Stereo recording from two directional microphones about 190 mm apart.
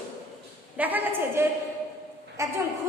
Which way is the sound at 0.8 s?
10° right (ahead or behind).